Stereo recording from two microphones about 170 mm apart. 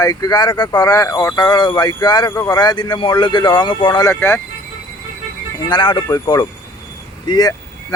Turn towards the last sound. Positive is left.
turn(degrees=20)  # may be behind; listen again after turning